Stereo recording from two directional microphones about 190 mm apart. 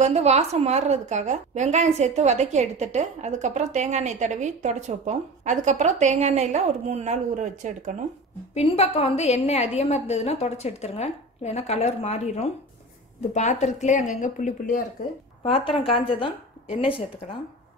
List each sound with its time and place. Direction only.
0.0 s a woman's voice: 35° right (ahead or behind)
8.5 s speech: 35° left (ahead or behind)
15.4 s speech: 30° left (ahead or behind)